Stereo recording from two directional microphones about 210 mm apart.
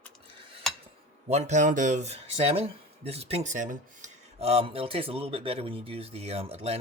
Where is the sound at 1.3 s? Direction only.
30° right (ahead or behind).